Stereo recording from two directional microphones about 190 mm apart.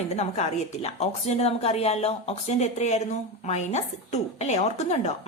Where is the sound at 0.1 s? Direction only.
35° left (ahead or behind).